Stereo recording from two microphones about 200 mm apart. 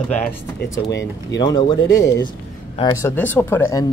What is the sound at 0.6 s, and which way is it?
Speech, 60° left (ahead or behind).